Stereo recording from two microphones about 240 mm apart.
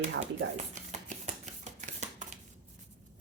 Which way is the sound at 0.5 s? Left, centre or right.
Right.